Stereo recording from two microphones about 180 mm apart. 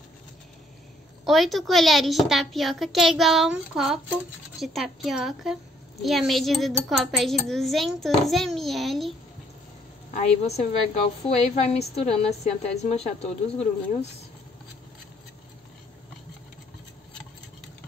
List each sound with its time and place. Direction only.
1.2 s a woman's voice: centre (ahead or behind)
10.1 s a woman's voice: 35° left (ahead or behind)